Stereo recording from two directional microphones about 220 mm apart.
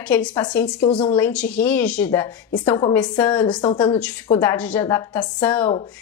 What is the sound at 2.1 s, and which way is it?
Speech, 20° left (ahead or behind).